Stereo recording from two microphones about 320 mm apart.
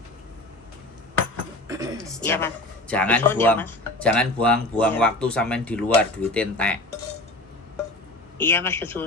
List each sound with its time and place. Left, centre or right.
1.6 s a sound: centre
2.0 s speech: centre
8.4 s speech: centre